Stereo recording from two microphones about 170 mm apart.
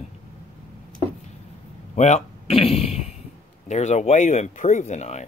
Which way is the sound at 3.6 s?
40° left (ahead or behind).